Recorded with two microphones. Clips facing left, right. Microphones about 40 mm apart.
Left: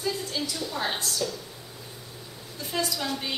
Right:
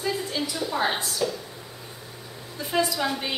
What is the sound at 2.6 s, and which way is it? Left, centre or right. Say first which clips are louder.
Speech: right 5 dB; centre.